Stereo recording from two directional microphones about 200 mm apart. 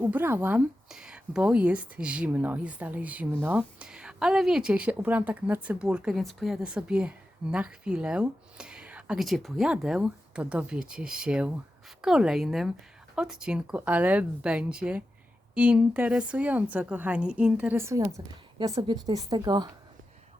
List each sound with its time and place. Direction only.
0.0 s a woman's voice: 10° right (ahead or behind)